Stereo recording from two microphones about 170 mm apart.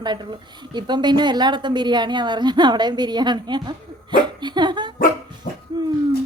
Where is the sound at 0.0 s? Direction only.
25° right (ahead or behind).